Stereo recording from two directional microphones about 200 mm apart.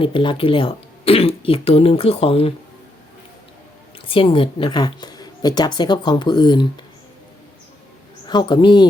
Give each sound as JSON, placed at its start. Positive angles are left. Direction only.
{"t": 0.0, "sound": "a woman's voice", "side_deg": 25}
{"t": 4.1, "sound": "a woman's voice", "side_deg": 25}
{"t": 8.3, "sound": "a woman's voice", "side_deg": 20}